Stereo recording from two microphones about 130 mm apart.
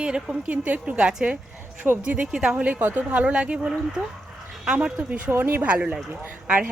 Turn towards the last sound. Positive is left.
turn(degrees=-10)  # may be behind; listen again after turning